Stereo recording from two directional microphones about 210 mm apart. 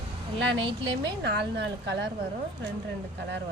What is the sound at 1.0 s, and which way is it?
A woman's voice, 55° right (ahead or behind).